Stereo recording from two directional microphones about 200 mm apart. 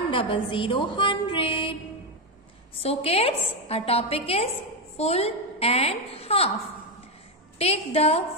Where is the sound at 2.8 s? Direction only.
30° left (ahead or behind).